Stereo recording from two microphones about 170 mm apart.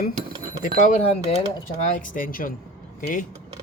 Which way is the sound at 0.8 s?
40° left (ahead or behind).